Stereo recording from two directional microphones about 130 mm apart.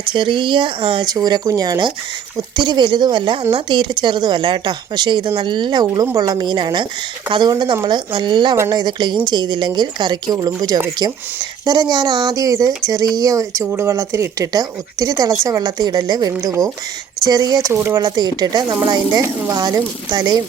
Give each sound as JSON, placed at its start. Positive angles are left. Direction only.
{"t": 0.1, "sound": "a woman's voice", "side_deg": -40}
{"t": 1.1, "sound": "a woman's voice", "side_deg": -30}
{"t": 18.0, "sound": "a woman's voice", "side_deg": -30}